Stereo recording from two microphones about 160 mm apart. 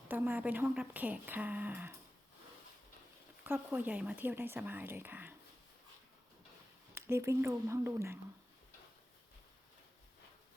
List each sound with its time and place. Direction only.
0.1 s speech: 10° right (ahead or behind)
3.4 s speech: 10° right (ahead or behind)
6.9 s speech: 15° right (ahead or behind)